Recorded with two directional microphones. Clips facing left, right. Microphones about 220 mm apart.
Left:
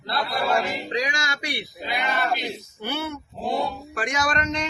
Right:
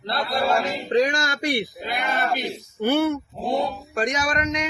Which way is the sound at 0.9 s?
50° right (ahead or behind).